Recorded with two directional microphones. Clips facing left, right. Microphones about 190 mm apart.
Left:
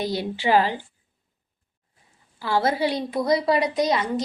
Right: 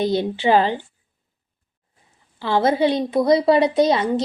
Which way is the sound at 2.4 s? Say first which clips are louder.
Right 5 dB; 20° right (ahead or behind).